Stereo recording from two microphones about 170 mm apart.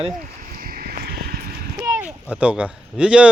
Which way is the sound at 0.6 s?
60° right (ahead or behind).